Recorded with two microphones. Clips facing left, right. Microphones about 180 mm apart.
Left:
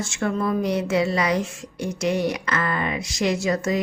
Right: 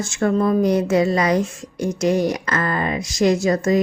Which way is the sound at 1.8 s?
45° right (ahead or behind).